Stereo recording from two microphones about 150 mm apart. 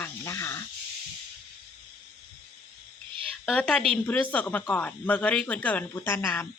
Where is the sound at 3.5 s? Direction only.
5° left (ahead or behind).